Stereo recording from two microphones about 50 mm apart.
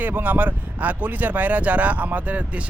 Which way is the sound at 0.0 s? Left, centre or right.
Right.